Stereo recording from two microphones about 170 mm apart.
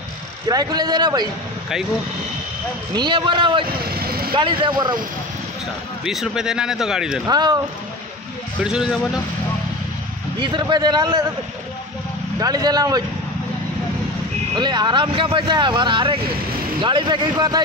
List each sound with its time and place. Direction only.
0.5 s speech: 20° right (ahead or behind)
2.9 s speech: 25° right (ahead or behind)
3.9 s vehicle: 65° right (ahead or behind)
4.3 s speech: 30° right (ahead or behind)
6.0 s a man's voice: 5° right (ahead or behind)
7.2 s speech: 25° right (ahead or behind)
8.6 s a man's voice: 5° right (ahead or behind)
10.4 s speech: 25° right (ahead or behind)
12.4 s speech: 20° right (ahead or behind)
14.5 s speech: 25° right (ahead or behind)